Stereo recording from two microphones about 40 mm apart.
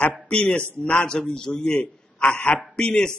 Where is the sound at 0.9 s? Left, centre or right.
Centre.